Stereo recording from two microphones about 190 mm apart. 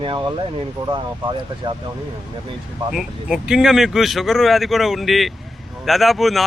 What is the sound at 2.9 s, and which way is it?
A man's voice, 5° right (ahead or behind).